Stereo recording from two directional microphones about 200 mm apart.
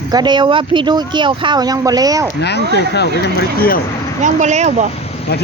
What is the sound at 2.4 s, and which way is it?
Speech, 55° left (ahead or behind).